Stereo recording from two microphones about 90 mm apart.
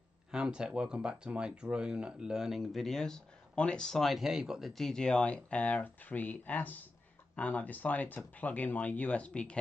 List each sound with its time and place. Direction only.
0.3 s speech: 10° right (ahead or behind); by 9.6 s 10° left (ahead or behind)